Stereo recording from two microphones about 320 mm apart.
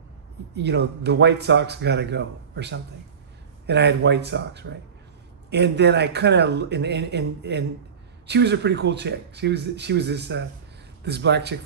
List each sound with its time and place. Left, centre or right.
0.6 s a man's voice: right